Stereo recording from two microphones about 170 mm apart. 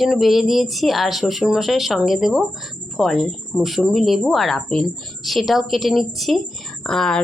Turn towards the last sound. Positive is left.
turn(degrees=5)  # may be behind; listen again after turning